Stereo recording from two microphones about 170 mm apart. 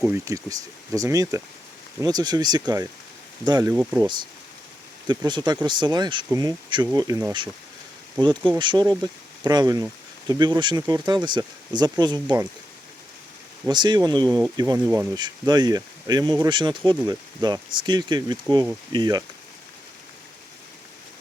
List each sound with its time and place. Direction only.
0.1 s speech: 20° right (ahead or behind)
5.0 s speech: 25° right (ahead or behind)
13.7 s speech: 25° right (ahead or behind)